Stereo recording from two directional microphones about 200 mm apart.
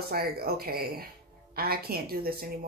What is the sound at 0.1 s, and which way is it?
Speech, 50° right (ahead or behind).